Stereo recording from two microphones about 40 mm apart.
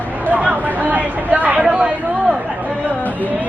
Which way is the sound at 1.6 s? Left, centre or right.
Right.